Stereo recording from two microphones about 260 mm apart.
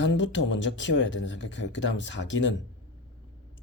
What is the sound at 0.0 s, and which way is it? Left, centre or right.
Speech, left.